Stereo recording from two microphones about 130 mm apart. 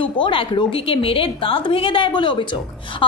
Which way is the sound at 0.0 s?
40° left (ahead or behind).